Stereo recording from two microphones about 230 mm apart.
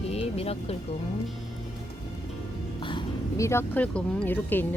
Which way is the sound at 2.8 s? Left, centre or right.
Left.